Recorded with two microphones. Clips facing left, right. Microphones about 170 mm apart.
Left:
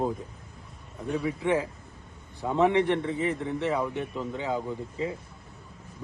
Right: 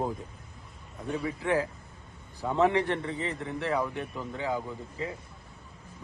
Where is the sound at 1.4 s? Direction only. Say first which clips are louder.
Left 2 dB; 20° left (ahead or behind).